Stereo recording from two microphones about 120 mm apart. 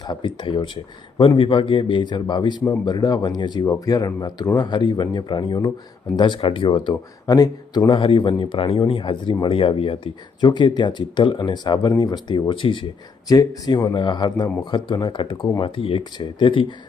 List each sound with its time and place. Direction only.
0.1 s speech: 40° left (ahead or behind)
6.9 s speech: 30° left (ahead or behind)
13.2 s speech: 30° left (ahead or behind)
13.9 s speech: 40° left (ahead or behind)